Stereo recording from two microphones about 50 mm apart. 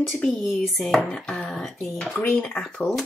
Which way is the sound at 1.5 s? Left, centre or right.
Centre.